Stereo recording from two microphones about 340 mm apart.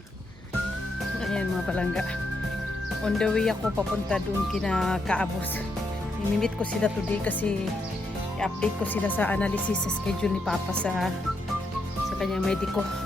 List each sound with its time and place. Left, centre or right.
1.2 s music: centre
3.0 s speech: centre
6.4 s speech: centre
12.2 s speech: centre